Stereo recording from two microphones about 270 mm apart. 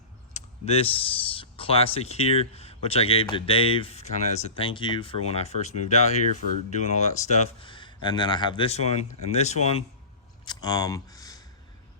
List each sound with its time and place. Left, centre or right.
0.3 s speech: left